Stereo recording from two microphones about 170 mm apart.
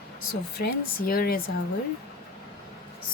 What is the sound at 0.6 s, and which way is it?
Speech, 60° left (ahead or behind).